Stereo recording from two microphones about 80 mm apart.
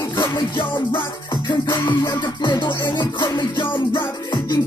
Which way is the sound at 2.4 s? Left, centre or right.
Left.